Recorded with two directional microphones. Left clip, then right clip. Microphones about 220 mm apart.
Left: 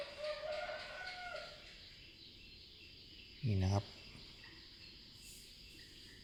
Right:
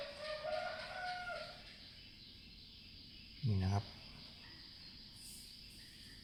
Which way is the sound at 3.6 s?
15° left (ahead or behind).